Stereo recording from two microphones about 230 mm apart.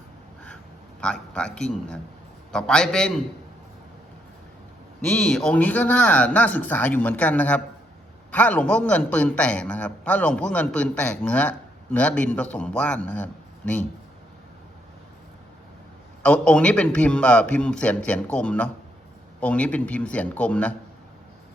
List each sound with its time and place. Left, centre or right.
1.3 s a man's voice: centre
5.0 s a man's voice: centre
16.2 s a man's voice: centre